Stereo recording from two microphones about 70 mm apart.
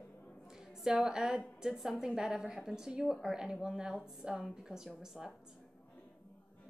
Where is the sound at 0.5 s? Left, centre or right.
Centre.